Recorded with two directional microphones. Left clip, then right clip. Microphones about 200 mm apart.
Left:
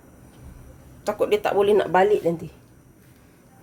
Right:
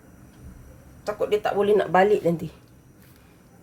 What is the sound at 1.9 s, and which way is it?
Speech, centre (ahead or behind).